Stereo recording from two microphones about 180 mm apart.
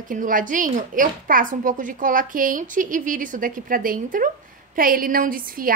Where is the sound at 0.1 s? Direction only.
50° right (ahead or behind).